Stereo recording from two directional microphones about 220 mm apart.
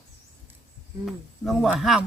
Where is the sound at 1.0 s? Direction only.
Centre (ahead or behind).